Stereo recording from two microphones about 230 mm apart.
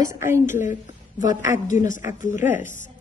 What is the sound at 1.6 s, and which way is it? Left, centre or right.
Speech, left.